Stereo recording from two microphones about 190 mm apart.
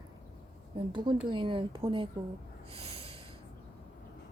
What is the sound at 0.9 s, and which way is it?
A woman's voice, 25° right (ahead or behind).